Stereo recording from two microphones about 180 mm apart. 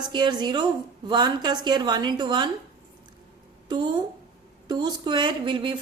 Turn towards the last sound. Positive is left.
turn(degrees=-30)  # may be behind; listen again after turning